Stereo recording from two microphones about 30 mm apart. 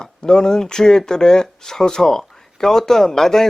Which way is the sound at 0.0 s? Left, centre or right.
Left.